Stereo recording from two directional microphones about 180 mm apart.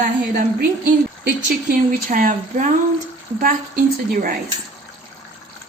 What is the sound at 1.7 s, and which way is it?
A woman's voice, 50° right (ahead or behind).